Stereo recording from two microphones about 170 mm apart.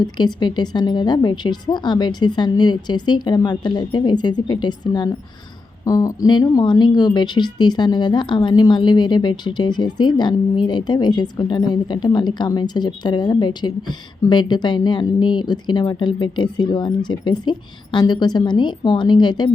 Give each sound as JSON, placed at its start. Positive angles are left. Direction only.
{"t": 0.0, "sound": "a woman's voice", "side_deg": 25}